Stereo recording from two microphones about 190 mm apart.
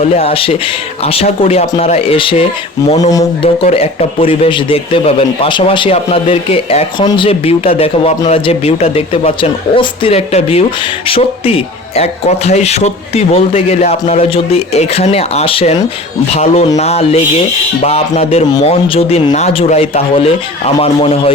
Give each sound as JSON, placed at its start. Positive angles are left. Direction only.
{"t": 0.0, "sound": "a man's voice", "side_deg": 35}